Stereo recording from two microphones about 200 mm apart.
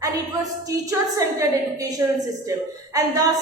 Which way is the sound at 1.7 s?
15° right (ahead or behind).